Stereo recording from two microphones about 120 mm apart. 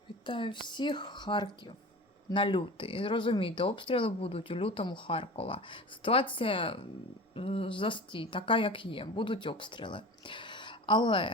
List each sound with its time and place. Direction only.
0.3 s a woman's voice: 45° left (ahead or behind)